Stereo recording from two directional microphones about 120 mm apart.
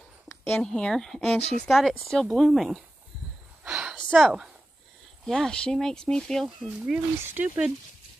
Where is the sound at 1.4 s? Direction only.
65° left (ahead or behind).